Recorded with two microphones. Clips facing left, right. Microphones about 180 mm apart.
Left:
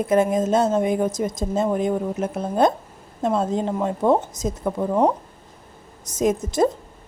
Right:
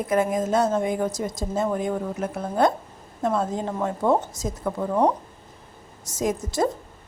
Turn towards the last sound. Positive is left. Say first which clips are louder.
# left 4 dB
turn(degrees=20)  # may be behind; listen again after turning